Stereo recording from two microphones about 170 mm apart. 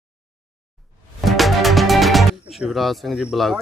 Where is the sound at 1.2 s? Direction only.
Centre (ahead or behind).